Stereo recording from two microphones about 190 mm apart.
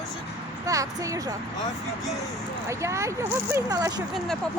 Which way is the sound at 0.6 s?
15° right (ahead or behind).